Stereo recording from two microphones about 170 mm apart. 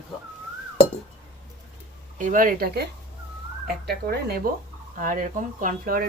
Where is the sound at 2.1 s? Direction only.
50° right (ahead or behind).